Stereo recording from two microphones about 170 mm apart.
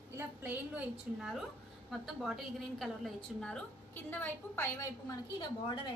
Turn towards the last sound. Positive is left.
turn(degrees=30)  # may be behind; listen again after turning